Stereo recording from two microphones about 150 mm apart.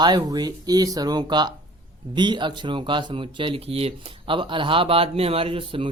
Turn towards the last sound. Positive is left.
turn(degrees=-35)  # may be behind; listen again after turning